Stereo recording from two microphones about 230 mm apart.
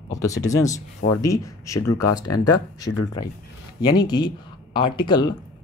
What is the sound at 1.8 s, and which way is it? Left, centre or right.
Speech, left.